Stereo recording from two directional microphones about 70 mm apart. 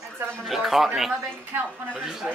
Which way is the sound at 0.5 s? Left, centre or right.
Centre.